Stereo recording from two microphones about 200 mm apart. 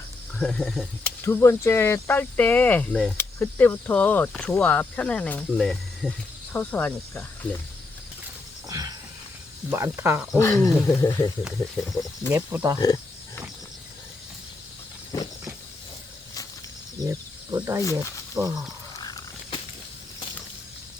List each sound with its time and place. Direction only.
0.3 s speech: 5° left (ahead or behind)
1.2 s speech: 15° left (ahead or behind)
8.7 s wild animals: 20° right (ahead or behind)
9.6 s speech: 15° right (ahead or behind)
10.3 s speech: 15° left (ahead or behind)
11.4 s speech: centre (ahead or behind)
12.3 s speech: 10° right (ahead or behind)
12.8 s wild animals: 20° left (ahead or behind)
17.1 s speech: 15° right (ahead or behind)
18.9 s a sound: 20° left (ahead or behind)